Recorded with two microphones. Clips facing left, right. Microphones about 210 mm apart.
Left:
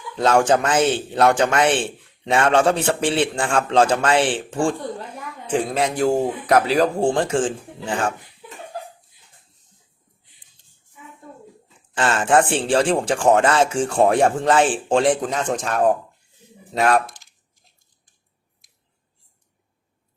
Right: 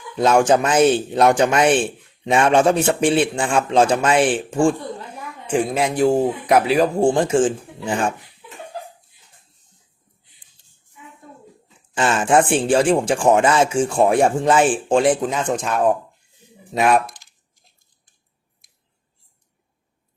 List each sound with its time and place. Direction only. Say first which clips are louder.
0.2 s speech: right 2 dB; 10° right (ahead or behind)
0.5 s speech: right 3 dB; 20° right (ahead or behind)
11.9 s speech: right 1 dB; 20° right (ahead or behind); by 15.9 s centre (ahead or behind)
16.8 s speech: right 1 dB; 10° right (ahead or behind)